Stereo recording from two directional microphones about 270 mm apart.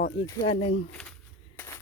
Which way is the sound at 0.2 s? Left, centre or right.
Centre.